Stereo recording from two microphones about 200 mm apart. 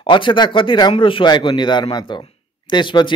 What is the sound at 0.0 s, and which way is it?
Speech, 25° left (ahead or behind).